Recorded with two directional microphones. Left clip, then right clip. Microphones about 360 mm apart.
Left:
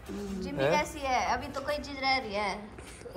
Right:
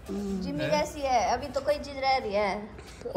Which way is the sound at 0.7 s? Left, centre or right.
Centre.